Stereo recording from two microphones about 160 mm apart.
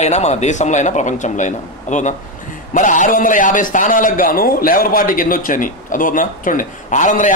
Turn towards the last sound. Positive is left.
turn(degrees=50)  # may be behind; listen again after turning